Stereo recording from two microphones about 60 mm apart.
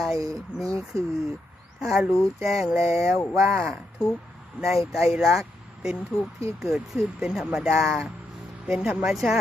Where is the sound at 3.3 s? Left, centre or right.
Right.